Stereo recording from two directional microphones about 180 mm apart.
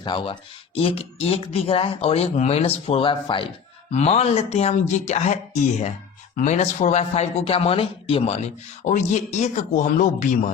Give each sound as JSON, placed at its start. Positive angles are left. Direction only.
{"t": 0.0, "sound": "speech", "side_deg": 25}